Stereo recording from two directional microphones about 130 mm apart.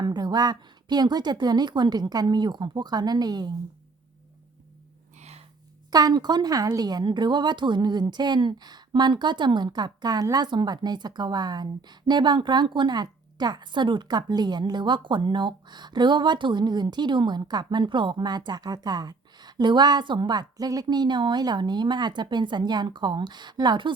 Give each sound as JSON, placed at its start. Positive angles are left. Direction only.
{"t": 0.0, "sound": "speech", "side_deg": -30}
{"t": 5.9, "sound": "speech", "side_deg": -30}